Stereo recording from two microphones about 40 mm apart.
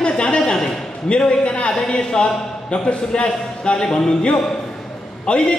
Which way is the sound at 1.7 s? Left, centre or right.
Left.